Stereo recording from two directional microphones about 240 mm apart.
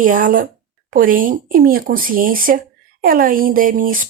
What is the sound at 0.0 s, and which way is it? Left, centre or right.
Speech, right.